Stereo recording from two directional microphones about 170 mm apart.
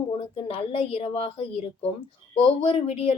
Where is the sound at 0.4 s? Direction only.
35° left (ahead or behind).